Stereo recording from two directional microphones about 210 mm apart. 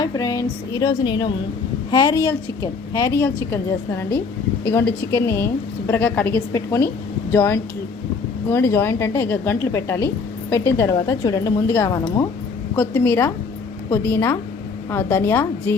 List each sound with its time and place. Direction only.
0.0 s a woman's voice: 15° left (ahead or behind)